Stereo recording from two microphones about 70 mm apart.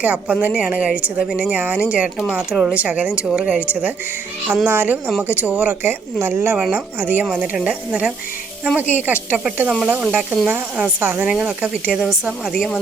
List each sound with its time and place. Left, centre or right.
0.0 s a woman's voice: centre; by 6.6 s right
6.6 s speech: right
8.7 s a woman's voice: right
11.0 s speech: right
11.3 s a woman's voice: centre